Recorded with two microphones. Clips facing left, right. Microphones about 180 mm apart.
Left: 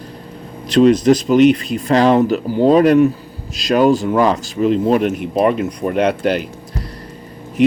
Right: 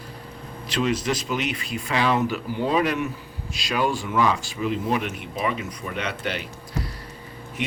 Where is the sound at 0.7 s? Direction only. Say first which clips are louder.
Left 14 dB; 40° left (ahead or behind).